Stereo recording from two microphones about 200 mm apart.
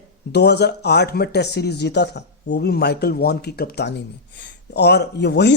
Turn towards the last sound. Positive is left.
turn(degrees=60)  # may be behind; listen again after turning